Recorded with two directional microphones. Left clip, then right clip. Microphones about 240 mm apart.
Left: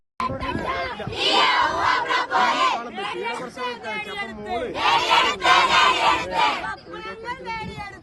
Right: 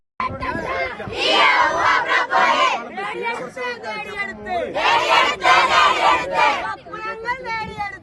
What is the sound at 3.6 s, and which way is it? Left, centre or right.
Chatter, centre.